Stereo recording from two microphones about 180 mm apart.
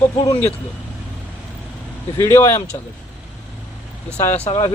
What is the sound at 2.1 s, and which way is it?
Speech, 15° left (ahead or behind).